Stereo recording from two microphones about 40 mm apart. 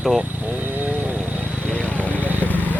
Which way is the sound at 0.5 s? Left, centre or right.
Right.